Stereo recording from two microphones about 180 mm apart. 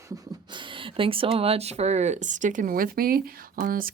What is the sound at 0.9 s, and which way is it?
Speech, 30° right (ahead or behind).